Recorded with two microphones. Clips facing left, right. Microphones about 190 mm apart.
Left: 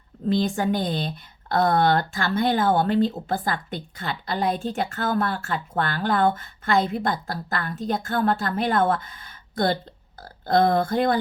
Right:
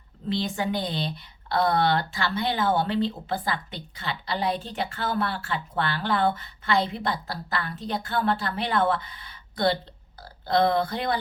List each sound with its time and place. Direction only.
0.3 s speech: 45° left (ahead or behind)